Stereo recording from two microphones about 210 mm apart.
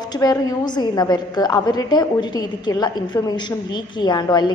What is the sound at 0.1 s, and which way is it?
A woman's voice, 20° left (ahead or behind).